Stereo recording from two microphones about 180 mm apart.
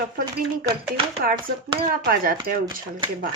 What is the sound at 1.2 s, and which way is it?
Speech, 60° right (ahead or behind).